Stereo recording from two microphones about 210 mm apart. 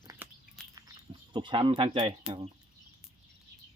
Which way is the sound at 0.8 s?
20° right (ahead or behind).